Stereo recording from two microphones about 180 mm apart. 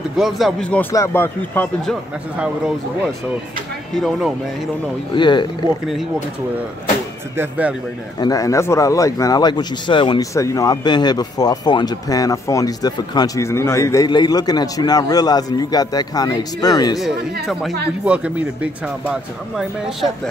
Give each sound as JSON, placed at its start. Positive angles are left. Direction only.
{"t": 0.2, "sound": "a man's voice", "side_deg": 0}
{"t": 2.3, "sound": "speech", "side_deg": -5}
{"t": 5.1, "sound": "speech", "side_deg": 25}
{"t": 7.3, "sound": "speech", "side_deg": -10}
{"t": 8.2, "sound": "speech", "side_deg": 20}
{"t": 17.0, "sound": "speech", "side_deg": 0}